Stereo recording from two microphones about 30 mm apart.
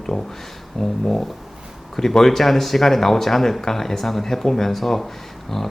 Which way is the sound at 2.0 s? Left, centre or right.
Centre.